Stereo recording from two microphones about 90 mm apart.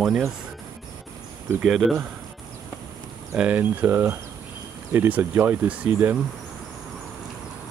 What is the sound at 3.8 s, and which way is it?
Speech, 25° right (ahead or behind).